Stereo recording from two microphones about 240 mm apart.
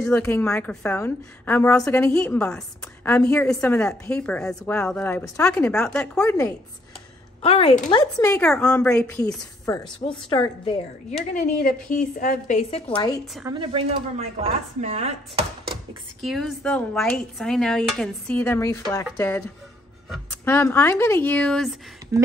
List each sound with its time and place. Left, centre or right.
0.0 s a woman's voice: centre
7.4 s a woman's voice: left
8.2 s a woman's voice: centre
10.6 s a woman's voice: left
11.3 s a woman's voice: left
13.5 s speech: right
16.2 s a woman's voice: centre